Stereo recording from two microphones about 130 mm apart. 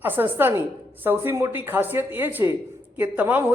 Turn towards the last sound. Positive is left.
turn(degrees=-15)  # may be behind; listen again after turning